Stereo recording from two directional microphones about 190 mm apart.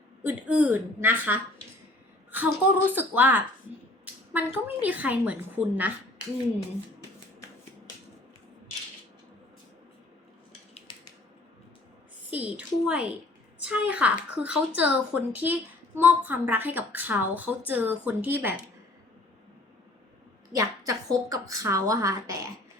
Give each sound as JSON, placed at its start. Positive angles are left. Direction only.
{"t": 0.2, "sound": "a woman's voice", "side_deg": -10}
{"t": 10.9, "sound": "a sound", "side_deg": 25}
{"t": 12.3, "sound": "a woman's voice", "side_deg": -5}
{"t": 20.5, "sound": "a woman's voice", "side_deg": -20}